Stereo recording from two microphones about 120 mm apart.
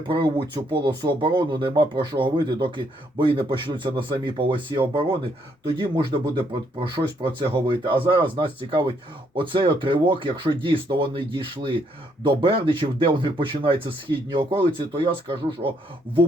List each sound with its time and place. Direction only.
0.1 s speech: 45° right (ahead or behind)